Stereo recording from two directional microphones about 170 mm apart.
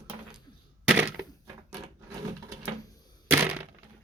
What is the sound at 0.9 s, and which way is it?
Crushing, 10° right (ahead or behind).